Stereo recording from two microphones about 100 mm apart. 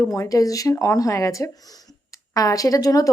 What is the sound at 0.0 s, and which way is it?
Speech, 35° left (ahead or behind).